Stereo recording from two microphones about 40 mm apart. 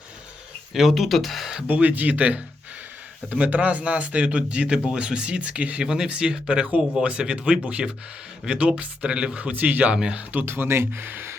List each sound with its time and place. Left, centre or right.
0.7 s speech: centre
1.6 s speech: right
5.8 s speech: centre; by 9.9 s right
9.9 s speech: right
10.4 s speech: right
11.0 s speech: right